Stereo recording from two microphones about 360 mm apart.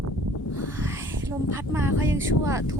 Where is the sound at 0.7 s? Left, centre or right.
Centre.